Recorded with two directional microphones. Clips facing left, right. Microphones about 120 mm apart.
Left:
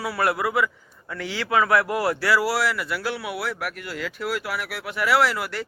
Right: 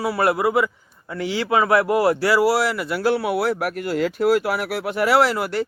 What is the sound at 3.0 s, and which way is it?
Speech, 35° right (ahead or behind).